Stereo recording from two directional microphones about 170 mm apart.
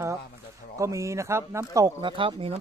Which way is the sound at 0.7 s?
20° right (ahead or behind).